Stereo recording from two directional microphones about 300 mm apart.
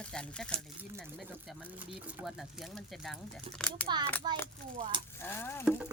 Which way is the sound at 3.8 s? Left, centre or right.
Centre.